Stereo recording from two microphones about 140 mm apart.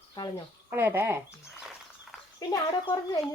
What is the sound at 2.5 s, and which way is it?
Speech, 25° left (ahead or behind).